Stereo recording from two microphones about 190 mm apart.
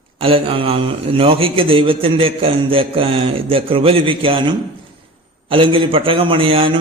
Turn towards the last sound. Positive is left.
turn(degrees=-30)  # may be behind; listen again after turning